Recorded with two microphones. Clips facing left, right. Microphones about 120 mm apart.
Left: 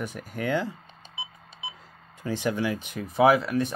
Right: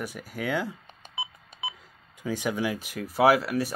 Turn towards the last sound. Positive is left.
turn(degrees=-5)  # may be behind; listen again after turning